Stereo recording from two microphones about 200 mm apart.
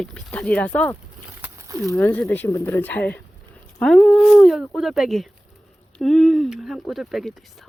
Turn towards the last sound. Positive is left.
turn(degrees=0)  # may be behind; listen again after turning